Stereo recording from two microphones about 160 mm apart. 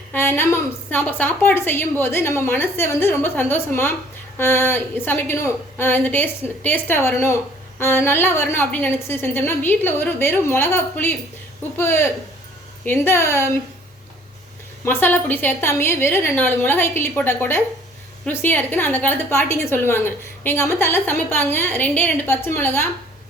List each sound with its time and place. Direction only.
0.1 s a woman's voice: 15° left (ahead or behind)
14.8 s a woman's voice: 10° left (ahead or behind)